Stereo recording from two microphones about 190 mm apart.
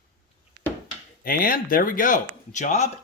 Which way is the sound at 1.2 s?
50° left (ahead or behind).